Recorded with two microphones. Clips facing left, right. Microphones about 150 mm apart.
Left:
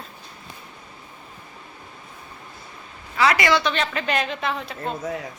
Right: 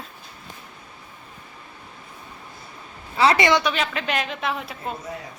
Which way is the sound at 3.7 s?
Centre (ahead or behind).